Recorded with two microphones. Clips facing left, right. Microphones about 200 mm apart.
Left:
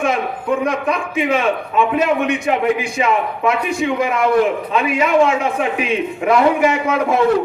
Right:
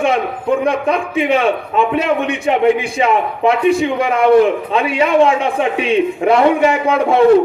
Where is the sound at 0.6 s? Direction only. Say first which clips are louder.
Right 3 dB; 30° right (ahead or behind).